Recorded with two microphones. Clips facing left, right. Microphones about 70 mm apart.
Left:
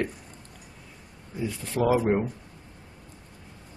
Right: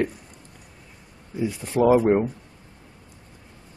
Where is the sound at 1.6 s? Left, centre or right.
Centre.